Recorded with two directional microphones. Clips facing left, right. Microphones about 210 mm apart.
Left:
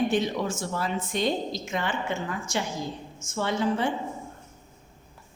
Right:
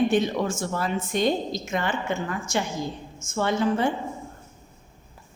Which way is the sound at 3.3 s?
50° right (ahead or behind).